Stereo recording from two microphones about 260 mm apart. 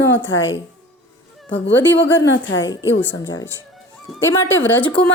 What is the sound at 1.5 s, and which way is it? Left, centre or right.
Speech, left.